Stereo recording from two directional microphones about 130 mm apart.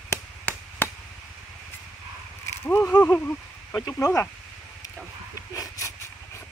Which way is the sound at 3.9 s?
20° left (ahead or behind).